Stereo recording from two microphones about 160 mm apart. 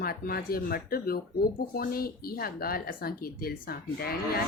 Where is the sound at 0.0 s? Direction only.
70° left (ahead or behind).